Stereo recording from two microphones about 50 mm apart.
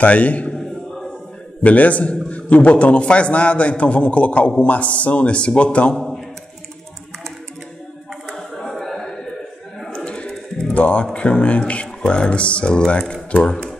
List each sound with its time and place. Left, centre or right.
0.0 s speech: left
1.6 s a man's voice: left
5.9 s a man's voice: centre
8.3 s a sound: centre
9.9 s a sound: centre
11.1 s speech: left